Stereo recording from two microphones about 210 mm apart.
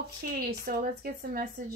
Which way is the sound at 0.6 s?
45° right (ahead or behind).